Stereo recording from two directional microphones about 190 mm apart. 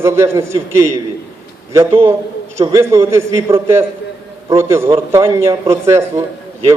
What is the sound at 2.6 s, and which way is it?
A man's voice, 15° right (ahead or behind).